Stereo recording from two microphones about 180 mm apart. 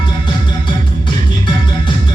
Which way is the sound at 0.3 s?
25° left (ahead or behind).